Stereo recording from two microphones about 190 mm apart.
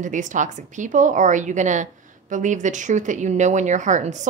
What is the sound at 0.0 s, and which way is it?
Speech, 40° right (ahead or behind).